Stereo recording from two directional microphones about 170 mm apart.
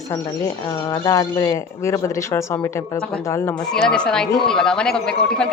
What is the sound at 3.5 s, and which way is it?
Speech, 5° left (ahead or behind).